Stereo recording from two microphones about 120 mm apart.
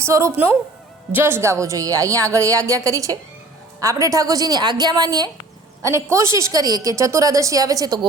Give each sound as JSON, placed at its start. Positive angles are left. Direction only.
{"t": 0.0, "sound": "a woman's voice", "side_deg": -25}